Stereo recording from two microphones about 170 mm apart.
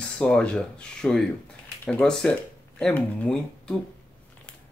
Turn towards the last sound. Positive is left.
turn(degrees=5)  # may be behind; listen again after turning